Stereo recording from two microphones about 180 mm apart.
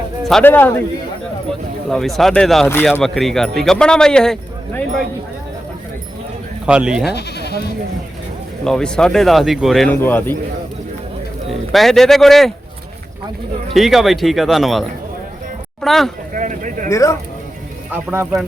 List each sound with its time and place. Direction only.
0.3 s a man's voice: 5° left (ahead or behind)
1.9 s speech: centre (ahead or behind)
6.7 s speech: 5° right (ahead or behind)
7.1 s speech: 65° left (ahead or behind)
8.6 s speech: 5° left (ahead or behind)
11.7 s speech: centre (ahead or behind)
13.7 s speech: centre (ahead or behind)
16.3 s a sound: 45° right (ahead or behind)
16.9 s a man's voice: 15° left (ahead or behind)
17.9 s speech: 10° right (ahead or behind)